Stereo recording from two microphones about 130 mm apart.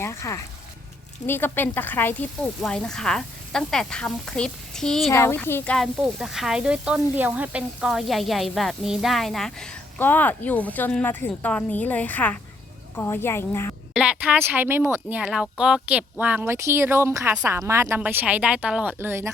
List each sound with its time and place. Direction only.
0.0 s a woman's voice: 20° left (ahead or behind); by 5.1 s centre (ahead or behind)
5.1 s speech: 20° left (ahead or behind)
6.1 s a woman's voice: 5° right (ahead or behind); by 13.7 s 20° left (ahead or behind)
13.9 s speech: 10° right (ahead or behind)
15.2 s speech: 5° right (ahead or behind)